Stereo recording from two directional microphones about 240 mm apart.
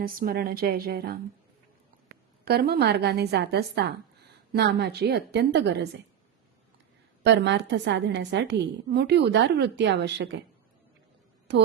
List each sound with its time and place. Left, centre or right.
0.0 s a woman's voice: right
2.4 s a woman's voice: right
7.3 s a woman's voice: right